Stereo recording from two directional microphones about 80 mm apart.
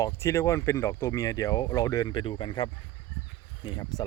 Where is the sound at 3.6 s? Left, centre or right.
Left.